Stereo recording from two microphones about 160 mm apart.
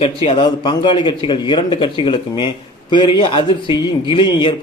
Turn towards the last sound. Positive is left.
turn(degrees=30)  # may be behind; listen again after turning